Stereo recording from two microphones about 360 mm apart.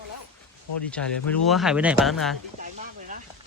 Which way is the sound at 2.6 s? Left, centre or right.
Right.